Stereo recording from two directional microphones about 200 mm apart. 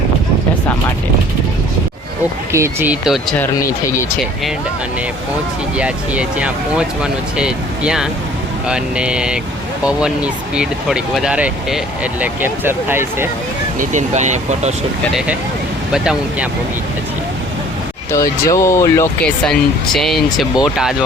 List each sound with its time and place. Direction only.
2.5 s speech: 15° right (ahead or behind)
5.7 s speech: 5° right (ahead or behind)
13.7 s speech: 35° right (ahead or behind)
15.9 s speech: 5° right (ahead or behind)
18.1 s speech: 15° left (ahead or behind)
19.5 s speech: centre (ahead or behind)